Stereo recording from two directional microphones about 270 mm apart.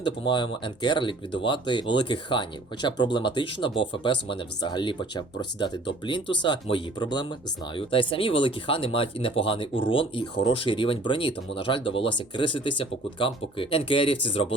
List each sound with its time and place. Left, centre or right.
0.0 s speech: centre